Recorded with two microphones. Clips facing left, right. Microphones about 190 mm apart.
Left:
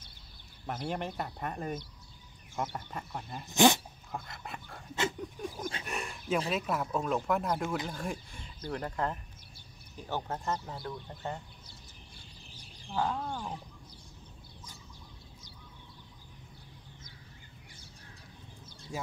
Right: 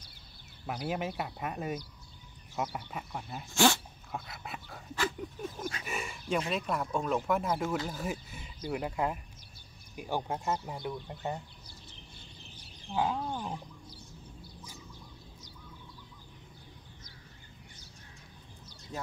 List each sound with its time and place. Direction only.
0.7 s speech: 5° right (ahead or behind)
3.4 s speech: 20° left (ahead or behind)
4.1 s dog: 5° right (ahead or behind)
4.9 s dog: 20° left (ahead or behind)
5.9 s a sound: centre (ahead or behind)
6.5 s speech: centre (ahead or behind); by 11.3 s 15° right (ahead or behind)
12.8 s speech: 15° right (ahead or behind)